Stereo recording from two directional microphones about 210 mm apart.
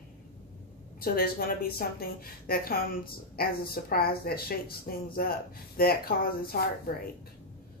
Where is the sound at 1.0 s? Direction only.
45° left (ahead or behind).